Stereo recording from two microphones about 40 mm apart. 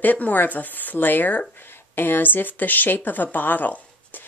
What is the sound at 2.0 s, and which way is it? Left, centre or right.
Speech, left.